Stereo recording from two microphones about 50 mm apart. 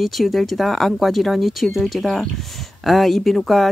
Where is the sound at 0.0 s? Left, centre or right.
Centre.